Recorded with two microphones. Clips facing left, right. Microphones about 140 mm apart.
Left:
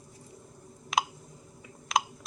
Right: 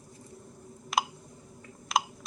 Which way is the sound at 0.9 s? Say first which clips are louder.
Even; centre (ahead or behind).